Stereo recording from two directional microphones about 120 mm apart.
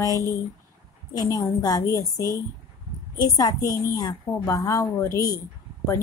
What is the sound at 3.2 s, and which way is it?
A woman's voice, 30° left (ahead or behind).